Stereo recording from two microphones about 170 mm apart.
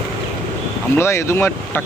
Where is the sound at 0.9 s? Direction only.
15° left (ahead or behind).